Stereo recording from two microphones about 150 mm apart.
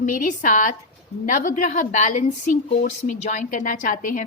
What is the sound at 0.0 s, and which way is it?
A woman's voice, 65° left (ahead or behind).